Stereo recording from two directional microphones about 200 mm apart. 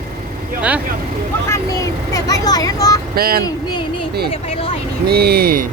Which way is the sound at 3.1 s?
50° right (ahead or behind).